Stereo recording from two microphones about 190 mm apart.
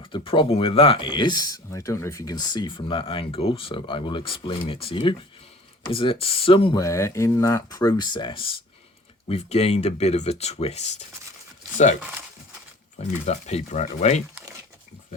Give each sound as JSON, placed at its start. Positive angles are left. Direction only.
{"t": 0.0, "sound": "speech", "side_deg": 25}
{"t": 13.2, "sound": "speech", "side_deg": 35}